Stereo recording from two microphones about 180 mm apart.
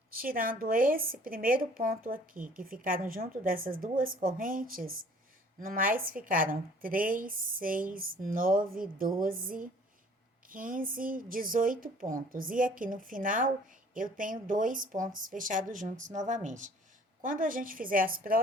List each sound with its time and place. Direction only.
0.1 s a woman's voice: 55° right (ahead or behind)